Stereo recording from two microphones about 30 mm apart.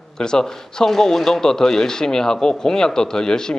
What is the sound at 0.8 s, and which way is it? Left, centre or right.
Speech, centre.